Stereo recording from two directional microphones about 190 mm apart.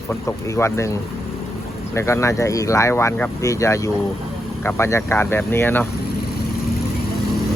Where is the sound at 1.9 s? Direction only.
15° left (ahead or behind).